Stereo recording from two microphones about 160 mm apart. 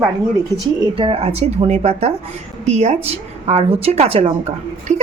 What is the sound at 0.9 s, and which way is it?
A woman's voice, 35° right (ahead or behind).